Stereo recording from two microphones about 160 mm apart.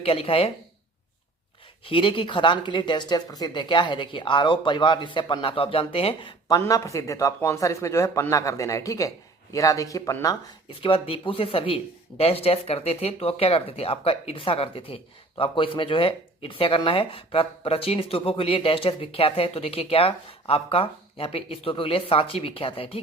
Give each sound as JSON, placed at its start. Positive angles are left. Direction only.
{"t": 0.0, "sound": "speech", "side_deg": 35}
{"t": 1.8, "sound": "a woman's voice", "side_deg": 35}
{"t": 6.5, "sound": "a woman's voice", "side_deg": 20}
{"t": 10.8, "sound": "speech", "side_deg": 35}